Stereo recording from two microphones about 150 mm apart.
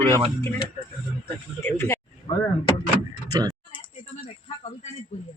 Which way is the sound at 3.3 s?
25° right (ahead or behind).